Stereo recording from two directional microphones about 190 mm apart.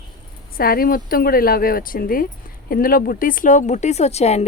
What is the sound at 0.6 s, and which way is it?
Speech, 50° left (ahead or behind).